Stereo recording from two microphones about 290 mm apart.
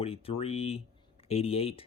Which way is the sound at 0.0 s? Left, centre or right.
Centre.